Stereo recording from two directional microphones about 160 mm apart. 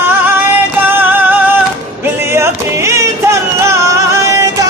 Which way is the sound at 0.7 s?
10° right (ahead or behind).